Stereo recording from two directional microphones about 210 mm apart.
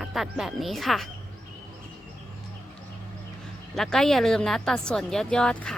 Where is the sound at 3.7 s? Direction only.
Centre (ahead or behind).